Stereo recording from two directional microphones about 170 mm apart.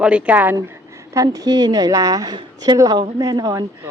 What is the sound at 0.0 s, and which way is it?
A woman's voice, 5° right (ahead or behind).